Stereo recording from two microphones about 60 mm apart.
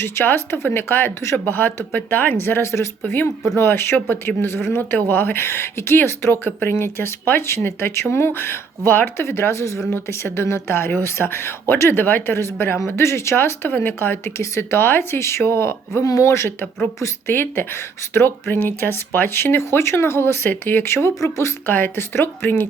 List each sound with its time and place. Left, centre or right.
0.0 s speech: left
16.0 s speech: left
16.3 s speech: left
21.7 s speech: left